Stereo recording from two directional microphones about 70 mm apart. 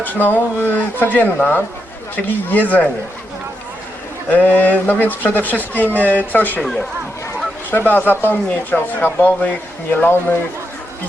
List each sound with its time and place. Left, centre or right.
0.0 s speech: left
4.3 s speech: left
7.7 s speech: left